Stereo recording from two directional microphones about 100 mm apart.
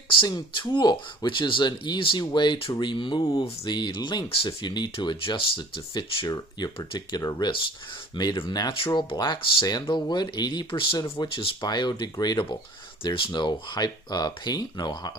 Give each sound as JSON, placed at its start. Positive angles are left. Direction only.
{"t": 0.1, "sound": "speech", "side_deg": 50}
{"t": 4.3, "sound": "speech", "side_deg": 60}
{"t": 7.2, "sound": "speech", "side_deg": 40}
{"t": 13.0, "sound": "speech", "side_deg": 55}